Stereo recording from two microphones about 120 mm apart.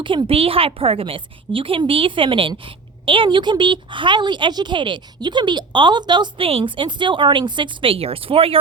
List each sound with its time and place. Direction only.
0.0 s a woman's voice: 45° right (ahead or behind)